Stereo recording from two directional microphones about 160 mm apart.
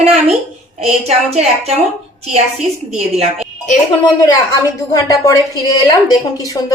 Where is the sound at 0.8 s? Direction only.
40° right (ahead or behind).